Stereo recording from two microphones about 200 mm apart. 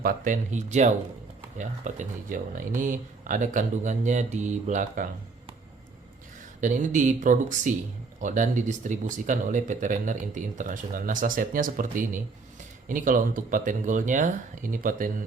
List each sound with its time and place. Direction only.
0.0 s speech: 45° right (ahead or behind)
6.6 s speech: 40° right (ahead or behind)